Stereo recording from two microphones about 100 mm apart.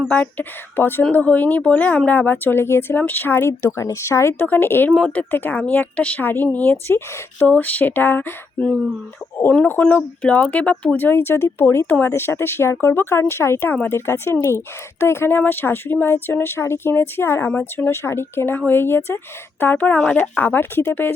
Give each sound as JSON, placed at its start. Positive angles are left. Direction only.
{"t": 0.1, "sound": "speech", "side_deg": 15}
{"t": 4.9, "sound": "speech", "side_deg": 5}
{"t": 5.1, "sound": "speech", "side_deg": 20}
{"t": 20.3, "sound": "speech", "side_deg": 20}